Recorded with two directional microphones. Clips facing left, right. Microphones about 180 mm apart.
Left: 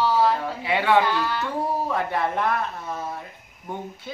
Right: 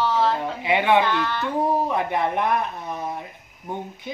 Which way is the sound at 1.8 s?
20° right (ahead or behind).